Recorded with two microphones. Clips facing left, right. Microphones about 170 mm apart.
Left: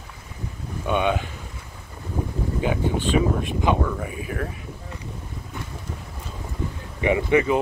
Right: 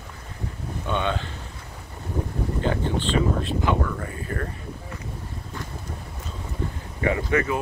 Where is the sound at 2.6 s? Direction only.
10° left (ahead or behind).